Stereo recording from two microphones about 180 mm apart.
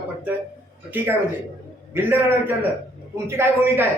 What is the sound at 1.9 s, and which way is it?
Speech, 10° right (ahead or behind).